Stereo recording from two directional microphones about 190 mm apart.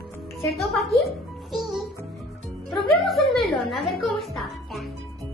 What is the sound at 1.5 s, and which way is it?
Music, centre (ahead or behind).